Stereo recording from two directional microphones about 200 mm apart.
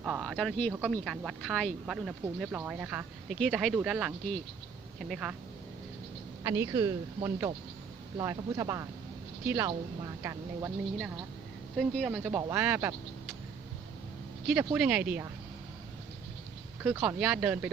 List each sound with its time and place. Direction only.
0.0 s a sound: 5° right (ahead or behind)
0.7 s speech: 5° right (ahead or behind)
6.4 s speech: 15° right (ahead or behind)
11.8 s speech: centre (ahead or behind)
14.4 s speech: 10° right (ahead or behind)
16.8 s speech: 10° right (ahead or behind)